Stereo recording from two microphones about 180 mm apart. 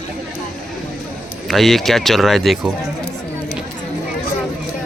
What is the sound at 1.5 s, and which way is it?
Speech, centre (ahead or behind).